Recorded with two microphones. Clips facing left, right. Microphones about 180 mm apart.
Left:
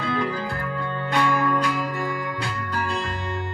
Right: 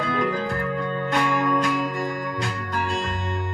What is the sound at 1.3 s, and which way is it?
Music, 20° right (ahead or behind).